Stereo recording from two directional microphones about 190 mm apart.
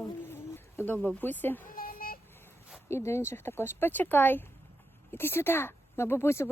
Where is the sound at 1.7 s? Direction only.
50° left (ahead or behind).